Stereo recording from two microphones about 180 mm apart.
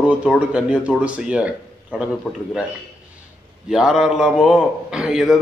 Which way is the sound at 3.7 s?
5° right (ahead or behind).